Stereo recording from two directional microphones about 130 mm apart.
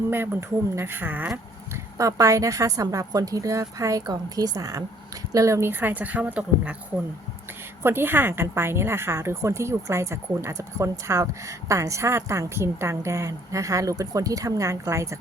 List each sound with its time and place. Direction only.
0.1 s speech: 15° right (ahead or behind)
1.7 s a woman's voice: 25° right (ahead or behind)